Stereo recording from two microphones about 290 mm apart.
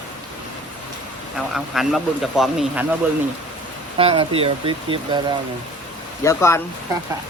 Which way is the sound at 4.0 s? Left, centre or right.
Centre.